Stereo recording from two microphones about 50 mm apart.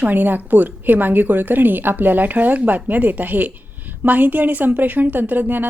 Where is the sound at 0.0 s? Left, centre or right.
Right.